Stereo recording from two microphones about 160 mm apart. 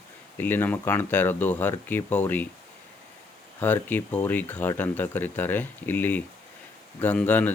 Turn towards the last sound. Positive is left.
turn(degrees=10)  # may be behind; listen again after turning